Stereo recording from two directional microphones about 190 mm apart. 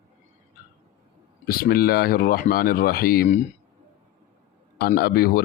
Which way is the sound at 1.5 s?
50° left (ahead or behind).